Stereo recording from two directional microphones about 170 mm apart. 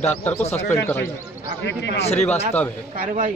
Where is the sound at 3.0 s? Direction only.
55° right (ahead or behind).